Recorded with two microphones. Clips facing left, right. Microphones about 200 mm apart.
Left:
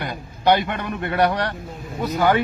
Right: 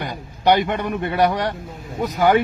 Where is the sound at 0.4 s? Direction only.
15° right (ahead or behind).